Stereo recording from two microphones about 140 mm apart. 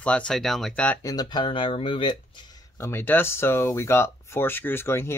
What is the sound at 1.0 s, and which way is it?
Speech, 25° left (ahead or behind).